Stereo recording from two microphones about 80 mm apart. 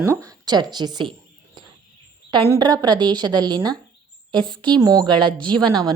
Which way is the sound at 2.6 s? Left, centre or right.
Right.